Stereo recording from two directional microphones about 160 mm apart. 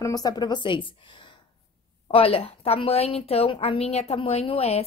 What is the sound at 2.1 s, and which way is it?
A woman's voice, 35° left (ahead or behind).